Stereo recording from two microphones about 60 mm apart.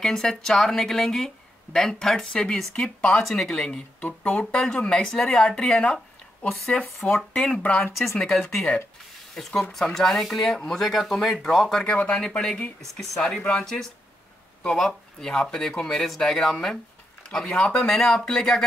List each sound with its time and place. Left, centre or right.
0.0 s speech: centre
3.0 s speech: left
3.3 s speech: centre
7.2 s speech: centre
7.8 s speech: centre
9.6 s speech: centre
11.8 s speech: centre
13.4 s speech: left
14.6 s speech: centre
17.5 s speech: centre